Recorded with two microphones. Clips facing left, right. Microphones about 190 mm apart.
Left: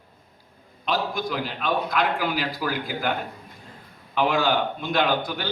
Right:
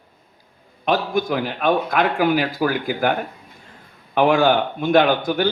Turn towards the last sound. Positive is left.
turn(degrees=-55)  # may be behind; listen again after turning